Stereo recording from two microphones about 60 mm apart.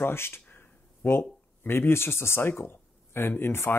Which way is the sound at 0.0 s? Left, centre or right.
Left.